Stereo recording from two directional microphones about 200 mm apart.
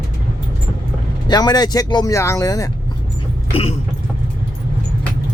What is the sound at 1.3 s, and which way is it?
Speech, 20° left (ahead or behind).